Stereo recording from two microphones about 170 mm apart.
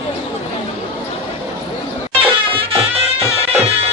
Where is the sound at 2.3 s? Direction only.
35° right (ahead or behind).